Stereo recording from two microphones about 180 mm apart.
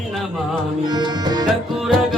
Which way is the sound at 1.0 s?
25° right (ahead or behind).